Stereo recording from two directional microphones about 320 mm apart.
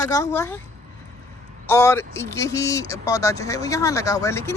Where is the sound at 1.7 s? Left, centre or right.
Centre.